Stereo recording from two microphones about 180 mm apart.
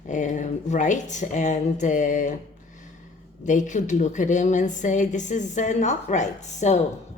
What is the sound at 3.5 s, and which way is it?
A woman's voice, 45° left (ahead or behind).